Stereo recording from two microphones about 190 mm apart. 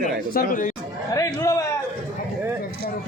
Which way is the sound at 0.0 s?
45° left (ahead or behind).